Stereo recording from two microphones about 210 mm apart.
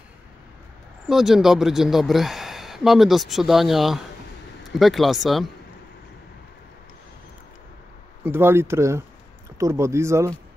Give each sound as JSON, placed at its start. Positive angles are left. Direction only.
{"t": 1.0, "sound": "speech", "side_deg": 0}
{"t": 8.2, "sound": "speech", "side_deg": -10}